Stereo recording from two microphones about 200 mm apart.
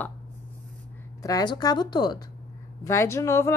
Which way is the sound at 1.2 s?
20° left (ahead or behind).